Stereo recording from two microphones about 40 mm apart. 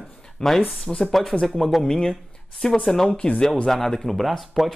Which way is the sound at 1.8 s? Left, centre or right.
Centre.